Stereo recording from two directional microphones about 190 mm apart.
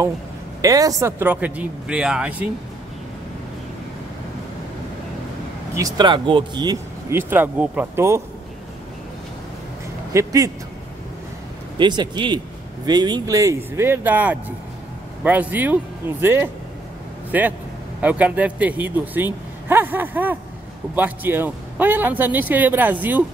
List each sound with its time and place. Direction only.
0.6 s speech: 20° right (ahead or behind)
5.8 s speech: 20° right (ahead or behind)
10.1 s speech: 15° right (ahead or behind)
11.8 s a man's voice: 25° right (ahead or behind)